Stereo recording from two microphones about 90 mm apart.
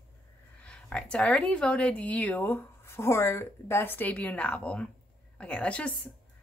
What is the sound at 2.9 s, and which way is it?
A woman's voice, 30° left (ahead or behind).